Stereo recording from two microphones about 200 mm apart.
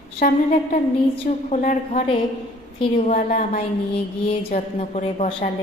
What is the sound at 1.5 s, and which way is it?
A woman's voice, 35° left (ahead or behind).